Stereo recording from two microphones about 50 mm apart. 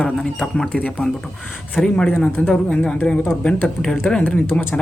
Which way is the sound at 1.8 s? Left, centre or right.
Centre.